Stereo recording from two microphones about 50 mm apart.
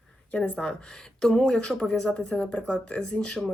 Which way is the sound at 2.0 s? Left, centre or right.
Left.